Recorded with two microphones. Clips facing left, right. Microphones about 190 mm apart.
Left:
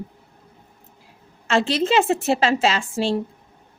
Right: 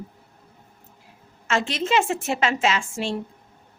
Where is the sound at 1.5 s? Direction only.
35° left (ahead or behind).